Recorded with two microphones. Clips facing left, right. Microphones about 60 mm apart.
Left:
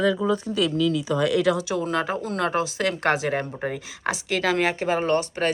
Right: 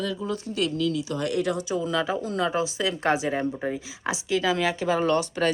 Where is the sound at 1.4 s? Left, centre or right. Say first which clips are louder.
Left 4 dB; left.